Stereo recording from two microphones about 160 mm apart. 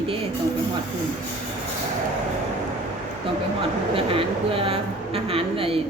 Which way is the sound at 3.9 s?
35° right (ahead or behind).